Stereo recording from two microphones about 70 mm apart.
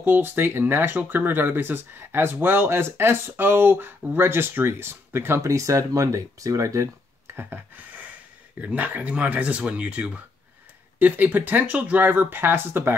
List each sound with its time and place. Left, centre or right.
0.0 s speech: right
5.5 s speech: right
7.3 s a sound: right
8.5 s speech: right